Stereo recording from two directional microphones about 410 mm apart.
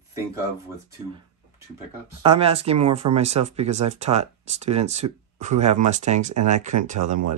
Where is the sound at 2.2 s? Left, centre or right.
Centre.